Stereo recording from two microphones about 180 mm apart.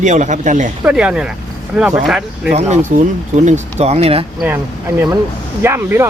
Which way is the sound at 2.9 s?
40° right (ahead or behind).